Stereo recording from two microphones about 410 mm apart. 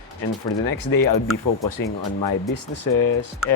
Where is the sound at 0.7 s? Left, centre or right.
Left.